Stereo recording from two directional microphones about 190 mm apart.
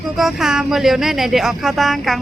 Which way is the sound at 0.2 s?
Centre (ahead or behind).